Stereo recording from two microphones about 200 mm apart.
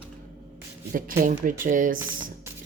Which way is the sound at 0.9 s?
45° right (ahead or behind).